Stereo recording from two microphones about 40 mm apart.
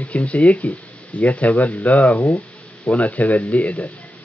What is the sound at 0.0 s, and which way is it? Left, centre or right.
A man's voice, left.